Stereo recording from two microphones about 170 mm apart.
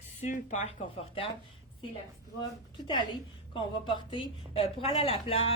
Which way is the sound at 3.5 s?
30° left (ahead or behind).